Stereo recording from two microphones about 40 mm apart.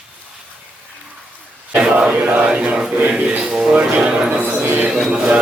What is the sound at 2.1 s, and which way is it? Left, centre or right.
Chant, right.